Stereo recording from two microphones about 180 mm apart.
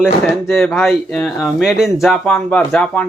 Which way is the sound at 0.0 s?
Centre (ahead or behind).